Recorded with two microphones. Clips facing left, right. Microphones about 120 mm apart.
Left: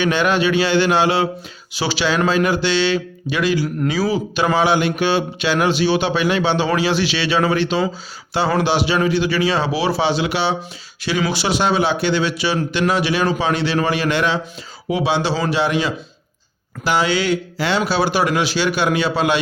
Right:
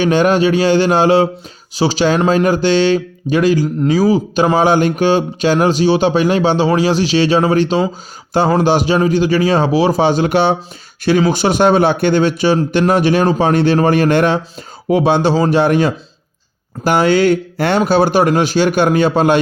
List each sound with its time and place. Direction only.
0.0 s speech: 40° right (ahead or behind)